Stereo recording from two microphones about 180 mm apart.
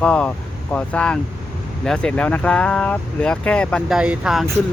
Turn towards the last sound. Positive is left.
turn(degrees=0)  # may be behind; listen again after turning